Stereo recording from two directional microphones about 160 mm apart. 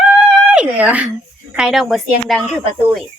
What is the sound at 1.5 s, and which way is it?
Speech, 5° right (ahead or behind).